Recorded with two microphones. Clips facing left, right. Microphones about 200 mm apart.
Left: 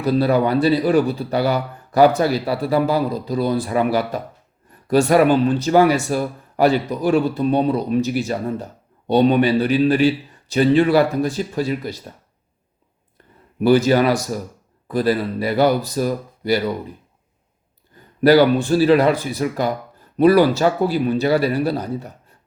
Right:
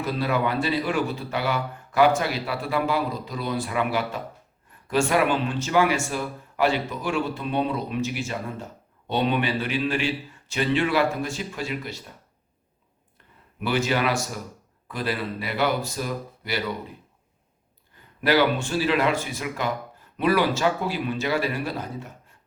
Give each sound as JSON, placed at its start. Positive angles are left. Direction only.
{"t": 0.0, "sound": "speech", "side_deg": 35}
{"t": 13.6, "sound": "speech", "side_deg": 40}
{"t": 18.2, "sound": "speech", "side_deg": 40}